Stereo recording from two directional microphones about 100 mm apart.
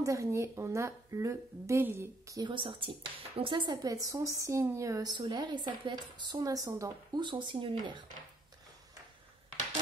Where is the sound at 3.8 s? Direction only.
35° right (ahead or behind).